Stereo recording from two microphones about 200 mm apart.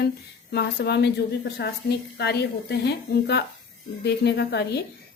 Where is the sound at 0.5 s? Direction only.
55° left (ahead or behind).